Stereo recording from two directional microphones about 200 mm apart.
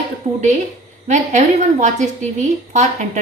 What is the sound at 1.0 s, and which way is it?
Speech, 35° right (ahead or behind).